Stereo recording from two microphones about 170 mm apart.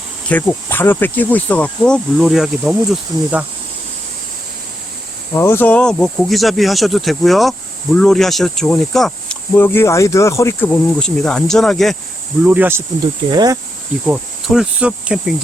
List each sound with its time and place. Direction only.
0.3 s speech: 10° left (ahead or behind)
5.3 s speech: 15° left (ahead or behind)
12.5 s speech: 10° right (ahead or behind)
13.3 s speech: 25° right (ahead or behind)
14.1 s cricket: centre (ahead or behind)